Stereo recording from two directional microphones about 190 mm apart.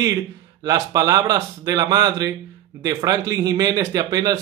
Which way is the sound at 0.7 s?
20° right (ahead or behind).